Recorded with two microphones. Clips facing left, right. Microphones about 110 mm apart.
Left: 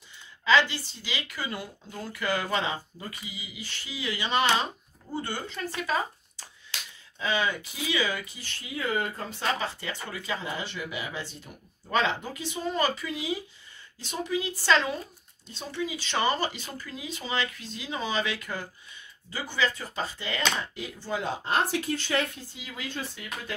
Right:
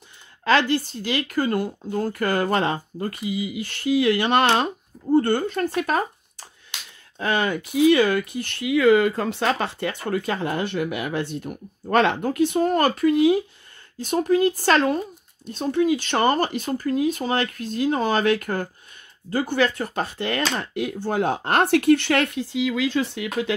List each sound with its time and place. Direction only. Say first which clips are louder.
0.5 s speech: right 4 dB; 55° right (ahead or behind)
7.2 s speech: right 5 dB; 55° right (ahead or behind); by 23.5 s 75° right (ahead or behind)